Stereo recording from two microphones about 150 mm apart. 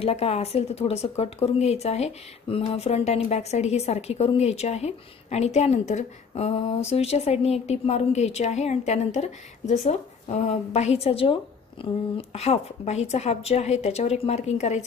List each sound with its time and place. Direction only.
0.0 s speech: 45° left (ahead or behind)